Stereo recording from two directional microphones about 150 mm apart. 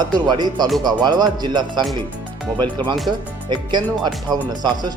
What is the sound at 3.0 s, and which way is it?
Speech, 30° right (ahead or behind).